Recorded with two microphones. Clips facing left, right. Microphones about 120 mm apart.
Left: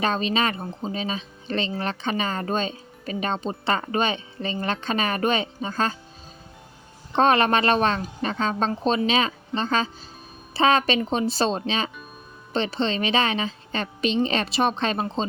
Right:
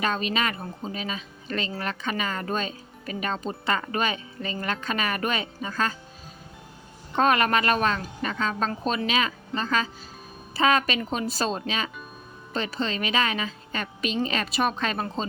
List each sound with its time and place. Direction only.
0.0 s speech: 30° left (ahead or behind)
7.2 s speech: 30° left (ahead or behind)